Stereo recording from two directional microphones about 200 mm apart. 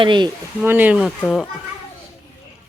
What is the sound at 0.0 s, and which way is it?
Speech, 25° right (ahead or behind).